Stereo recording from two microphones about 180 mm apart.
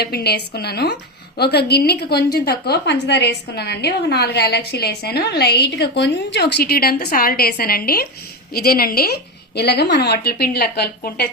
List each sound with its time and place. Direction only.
0.0 s a woman's voice: 60° left (ahead or behind)